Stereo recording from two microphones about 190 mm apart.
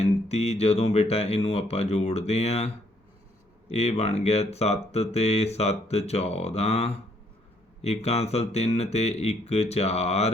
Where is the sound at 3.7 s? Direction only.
35° left (ahead or behind).